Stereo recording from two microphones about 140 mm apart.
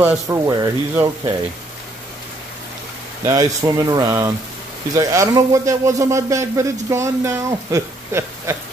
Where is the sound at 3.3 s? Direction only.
25° right (ahead or behind).